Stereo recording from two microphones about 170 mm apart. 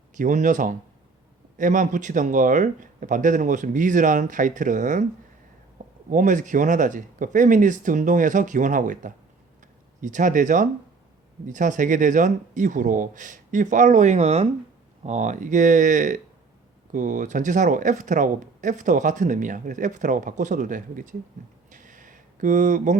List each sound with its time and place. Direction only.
0.1 s speech: 50° right (ahead or behind)
6.1 s speech: 50° right (ahead or behind)
21.7 s a sound: 50° right (ahead or behind)